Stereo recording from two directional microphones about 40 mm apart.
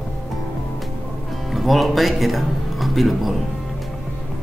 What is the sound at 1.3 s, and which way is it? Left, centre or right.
Speech, centre.